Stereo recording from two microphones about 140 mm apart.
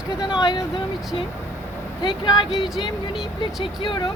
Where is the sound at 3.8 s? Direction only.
35° left (ahead or behind).